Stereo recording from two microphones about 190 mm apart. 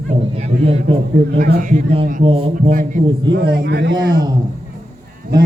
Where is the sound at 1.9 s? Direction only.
30° right (ahead or behind).